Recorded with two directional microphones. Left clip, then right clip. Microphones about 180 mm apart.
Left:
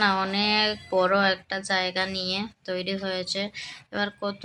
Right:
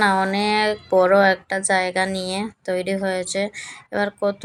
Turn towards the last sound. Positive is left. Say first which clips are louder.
# right 7 dB
turn(degrees=-20)  # may be behind; listen again after turning